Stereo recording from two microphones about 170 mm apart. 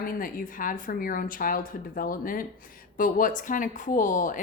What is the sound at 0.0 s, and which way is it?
A woman's voice, 55° left (ahead or behind).